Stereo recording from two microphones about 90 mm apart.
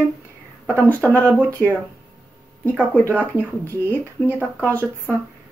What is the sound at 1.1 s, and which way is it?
Speech, 15° left (ahead or behind).